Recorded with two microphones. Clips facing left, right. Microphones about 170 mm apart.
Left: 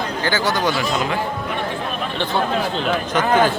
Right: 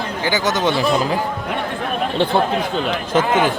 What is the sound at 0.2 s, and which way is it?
Speech, 15° right (ahead or behind).